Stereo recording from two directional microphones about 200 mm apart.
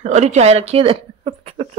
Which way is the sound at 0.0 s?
35° right (ahead or behind).